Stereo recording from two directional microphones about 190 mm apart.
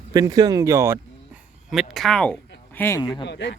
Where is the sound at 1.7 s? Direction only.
Centre (ahead or behind).